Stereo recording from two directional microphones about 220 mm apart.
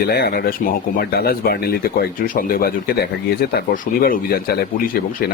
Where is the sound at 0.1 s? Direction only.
45° left (ahead or behind).